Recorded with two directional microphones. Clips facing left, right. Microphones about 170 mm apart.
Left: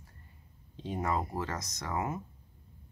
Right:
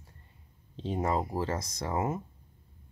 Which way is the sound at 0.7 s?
30° right (ahead or behind).